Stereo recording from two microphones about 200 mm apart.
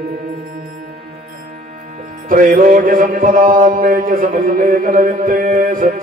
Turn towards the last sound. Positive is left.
turn(degrees=-45)  # may be behind; listen again after turning